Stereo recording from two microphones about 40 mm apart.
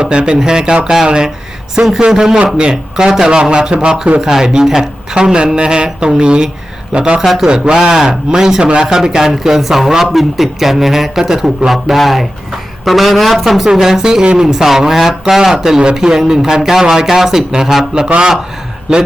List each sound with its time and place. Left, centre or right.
0.0 s a man's voice: right
3.5 s speech: right
9.1 s a woman's voice: centre
13.7 s speech: centre